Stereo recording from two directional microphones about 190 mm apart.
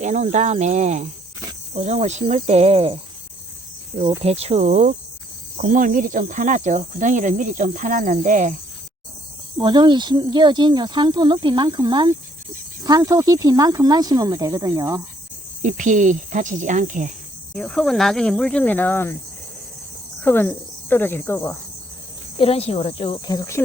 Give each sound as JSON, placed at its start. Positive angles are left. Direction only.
{"t": 0.0, "sound": "speech", "side_deg": -40}
{"t": 4.2, "sound": "speech", "side_deg": -30}
{"t": 9.6, "sound": "speech", "side_deg": -25}
{"t": 15.6, "sound": "speech", "side_deg": -40}
{"t": 17.5, "sound": "speech", "side_deg": 5}
{"t": 20.2, "sound": "speech", "side_deg": 10}
{"t": 22.4, "sound": "speech", "side_deg": 30}